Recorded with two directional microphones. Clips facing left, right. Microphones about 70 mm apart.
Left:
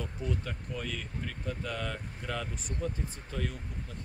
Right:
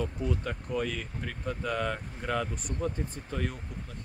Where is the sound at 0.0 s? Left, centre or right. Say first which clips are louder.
Right 4 dB; right.